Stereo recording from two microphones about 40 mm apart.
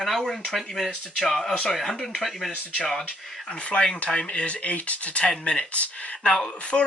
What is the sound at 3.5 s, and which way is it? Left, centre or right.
Speech, left.